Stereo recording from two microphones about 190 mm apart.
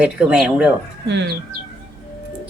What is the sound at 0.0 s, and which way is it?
Speech, 5° right (ahead or behind).